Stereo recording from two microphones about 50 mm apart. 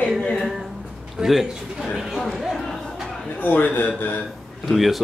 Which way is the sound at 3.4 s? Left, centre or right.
Left.